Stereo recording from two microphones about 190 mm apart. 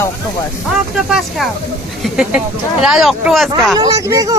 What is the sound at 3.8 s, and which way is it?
Speech, 20° right (ahead or behind).